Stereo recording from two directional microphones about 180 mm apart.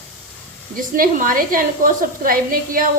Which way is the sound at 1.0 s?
50° right (ahead or behind).